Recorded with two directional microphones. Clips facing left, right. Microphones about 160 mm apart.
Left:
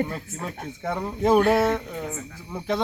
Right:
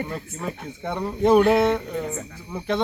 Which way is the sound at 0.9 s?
5° left (ahead or behind).